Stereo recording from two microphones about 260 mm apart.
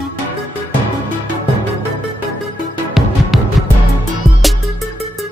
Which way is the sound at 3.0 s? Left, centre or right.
Centre.